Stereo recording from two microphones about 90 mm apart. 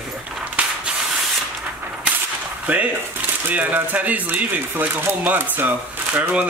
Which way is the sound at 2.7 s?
20° right (ahead or behind).